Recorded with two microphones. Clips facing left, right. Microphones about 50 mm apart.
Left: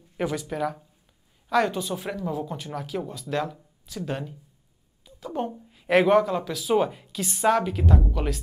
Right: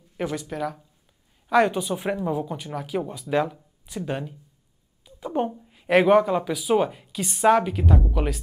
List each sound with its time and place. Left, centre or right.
0.2 s speech: centre
1.5 s speech: centre
5.2 s a woman's voice: centre
5.5 s speech: centre